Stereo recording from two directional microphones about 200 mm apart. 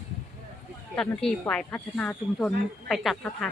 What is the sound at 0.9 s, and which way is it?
Speech, 5° left (ahead or behind).